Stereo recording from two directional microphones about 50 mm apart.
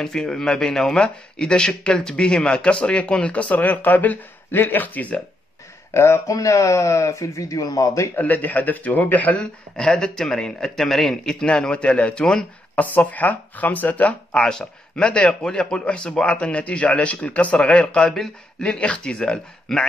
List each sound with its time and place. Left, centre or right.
0.0 s speech: centre; by 5.1 s left
5.9 s speech: left
8.2 s speech: left
9.4 s speech: centre
11.4 s speech: centre
12.7 s speech: left
14.4 s speech: centre